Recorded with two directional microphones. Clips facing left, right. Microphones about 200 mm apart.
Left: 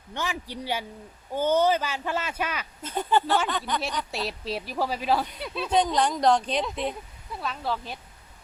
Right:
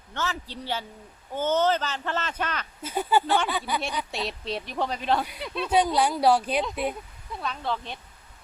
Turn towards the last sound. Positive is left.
turn(degrees=5)  # may be behind; listen again after turning